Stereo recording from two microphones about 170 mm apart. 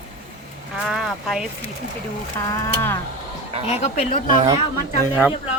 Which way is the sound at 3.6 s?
35° left (ahead or behind).